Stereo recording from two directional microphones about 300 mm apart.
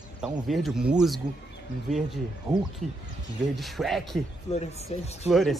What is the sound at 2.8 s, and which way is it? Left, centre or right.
Speech, right.